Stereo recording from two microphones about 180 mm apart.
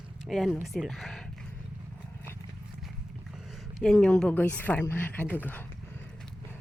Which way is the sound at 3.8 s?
5° left (ahead or behind).